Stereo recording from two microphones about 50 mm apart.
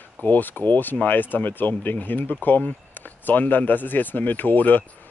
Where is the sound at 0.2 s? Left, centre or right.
Left.